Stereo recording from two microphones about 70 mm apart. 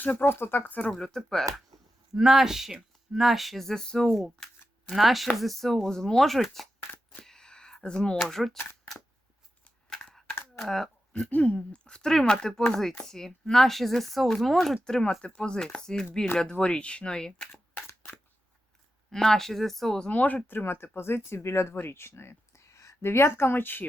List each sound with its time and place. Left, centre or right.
0.0 s speech: left
0.8 s speech: centre
2.1 s speech: centre
6.7 s a sound: left
7.3 s a sound: centre
8.2 s speech: centre
9.9 s a sound: centre
10.6 s speech: centre
11.1 s speech: left
19.1 s speech: centre
20.1 s speech: left